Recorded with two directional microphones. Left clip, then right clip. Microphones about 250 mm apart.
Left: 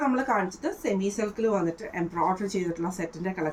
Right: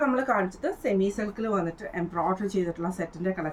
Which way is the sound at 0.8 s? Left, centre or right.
Centre.